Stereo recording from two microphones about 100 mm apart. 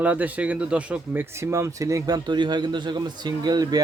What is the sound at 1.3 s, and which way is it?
Speech, 30° right (ahead or behind).